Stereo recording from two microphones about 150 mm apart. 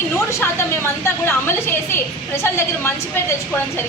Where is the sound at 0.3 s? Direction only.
20° left (ahead or behind).